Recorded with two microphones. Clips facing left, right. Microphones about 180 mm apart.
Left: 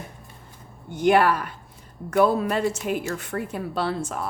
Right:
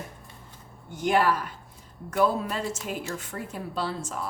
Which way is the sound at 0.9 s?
70° left (ahead or behind).